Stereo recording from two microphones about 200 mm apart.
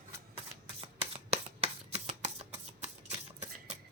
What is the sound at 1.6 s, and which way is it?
Shuffling cards, 30° right (ahead or behind).